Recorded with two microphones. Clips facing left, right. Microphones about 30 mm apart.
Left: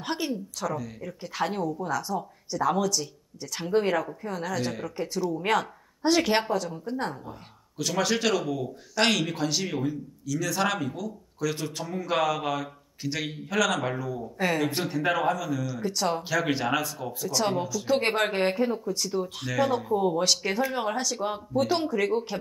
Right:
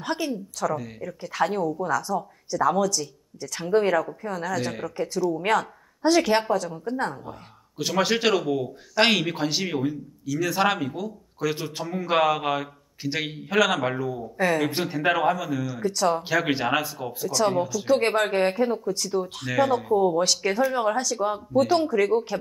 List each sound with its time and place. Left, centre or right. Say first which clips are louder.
0.0 s speech: right 2 dB; centre
0.7 s speech: right 1 dB; centre
1.0 s speech: right 5 dB; centre
7.2 s speech: right 3 dB; centre
14.2 s speech: right 3 dB; centre
14.7 s speech: right 3 dB; centre
15.8 s speech: right 6 dB; centre
16.3 s speech: right 3 dB; centre
17.3 s speech: right 4 dB; centre
19.4 s speech: right 6 dB; centre
20.0 s speech: right 3 dB; centre